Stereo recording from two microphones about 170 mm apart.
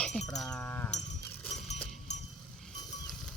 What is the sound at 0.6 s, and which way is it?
Sheep, 10° left (ahead or behind).